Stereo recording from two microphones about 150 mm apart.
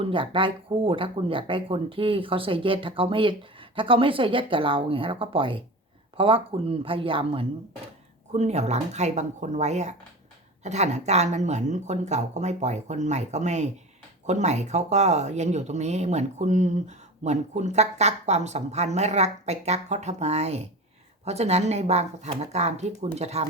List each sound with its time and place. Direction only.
0.0 s speech: 35° right (ahead or behind)
8.3 s speech: 50° right (ahead or behind)